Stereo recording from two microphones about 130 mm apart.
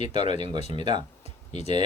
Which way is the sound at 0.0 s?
60° left (ahead or behind).